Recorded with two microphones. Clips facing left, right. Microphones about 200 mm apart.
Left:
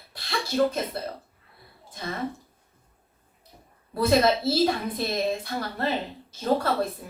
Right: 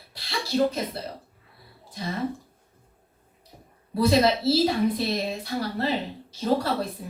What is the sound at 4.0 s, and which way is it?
A woman's voice, 50° left (ahead or behind).